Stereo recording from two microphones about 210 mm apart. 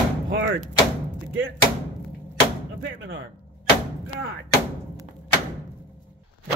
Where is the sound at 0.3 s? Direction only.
60° right (ahead or behind).